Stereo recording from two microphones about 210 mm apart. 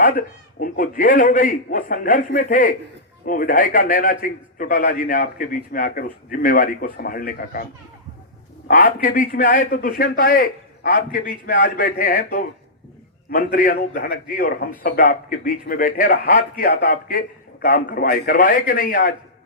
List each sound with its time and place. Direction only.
0.0 s a man's voice: 40° left (ahead or behind)